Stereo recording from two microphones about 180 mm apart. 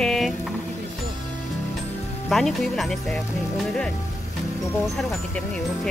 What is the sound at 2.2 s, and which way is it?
Speech, centre (ahead or behind).